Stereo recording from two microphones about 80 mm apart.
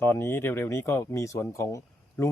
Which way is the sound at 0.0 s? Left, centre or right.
Left.